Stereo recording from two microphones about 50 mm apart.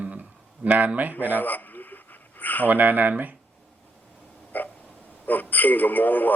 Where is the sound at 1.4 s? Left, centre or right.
Left.